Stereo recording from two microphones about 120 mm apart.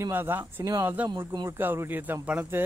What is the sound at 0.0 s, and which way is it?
Speech, 15° right (ahead or behind).